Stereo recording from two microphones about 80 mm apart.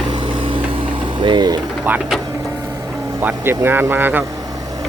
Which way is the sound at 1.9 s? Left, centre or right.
Right.